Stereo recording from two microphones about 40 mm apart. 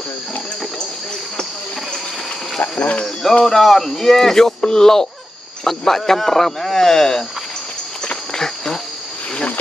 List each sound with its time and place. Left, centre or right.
2.8 s speech: left
3.4 s speech: centre
8.1 s walk: centre